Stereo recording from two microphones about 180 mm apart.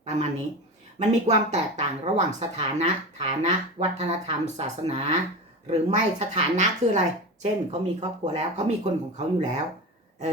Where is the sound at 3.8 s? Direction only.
35° right (ahead or behind).